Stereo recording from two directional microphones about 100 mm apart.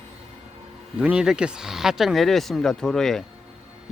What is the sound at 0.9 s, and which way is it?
Speech, 10° right (ahead or behind).